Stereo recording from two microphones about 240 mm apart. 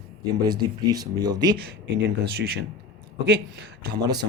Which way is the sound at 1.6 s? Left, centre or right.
Right.